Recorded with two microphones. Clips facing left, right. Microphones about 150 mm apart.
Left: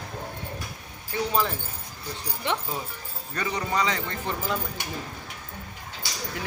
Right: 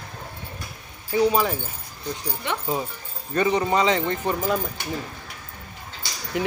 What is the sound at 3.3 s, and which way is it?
Speech, 25° right (ahead or behind).